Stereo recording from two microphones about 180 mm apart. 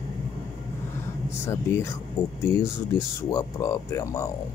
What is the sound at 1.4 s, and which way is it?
Speech, 15° left (ahead or behind).